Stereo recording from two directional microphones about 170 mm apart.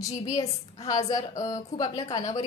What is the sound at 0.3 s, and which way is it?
A woman's voice, 20° left (ahead or behind).